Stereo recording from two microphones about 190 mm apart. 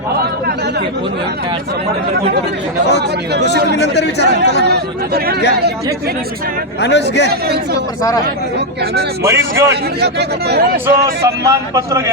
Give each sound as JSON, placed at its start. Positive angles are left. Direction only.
{"t": 3.8, "sound": "speech", "side_deg": 65}
{"t": 4.6, "sound": "speech", "side_deg": -60}
{"t": 6.8, "sound": "speech", "side_deg": 65}
{"t": 7.3, "sound": "speech", "side_deg": -55}
{"t": 9.2, "sound": "a man's voice", "side_deg": -15}
{"t": 10.0, "sound": "speech", "side_deg": -60}
{"t": 10.8, "sound": "a man's voice", "side_deg": -15}